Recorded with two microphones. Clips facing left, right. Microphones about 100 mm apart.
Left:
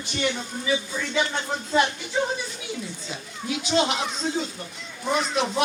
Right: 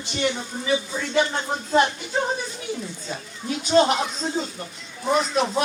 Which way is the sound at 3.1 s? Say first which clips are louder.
Right 2 dB; 40° right (ahead or behind).